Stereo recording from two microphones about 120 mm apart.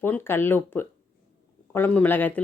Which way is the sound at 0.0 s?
20° left (ahead or behind).